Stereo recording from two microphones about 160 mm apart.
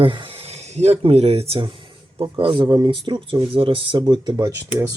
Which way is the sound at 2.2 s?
30° right (ahead or behind).